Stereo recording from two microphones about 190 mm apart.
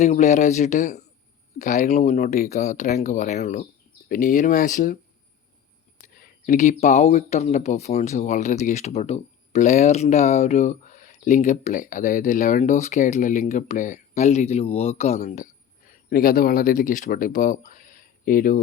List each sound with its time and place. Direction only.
0.0 s speech: 35° left (ahead or behind)
6.0 s speech: 50° left (ahead or behind)
15.9 s speech: 50° left (ahead or behind)